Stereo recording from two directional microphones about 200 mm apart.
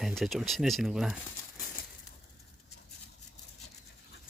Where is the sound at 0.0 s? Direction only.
Centre (ahead or behind).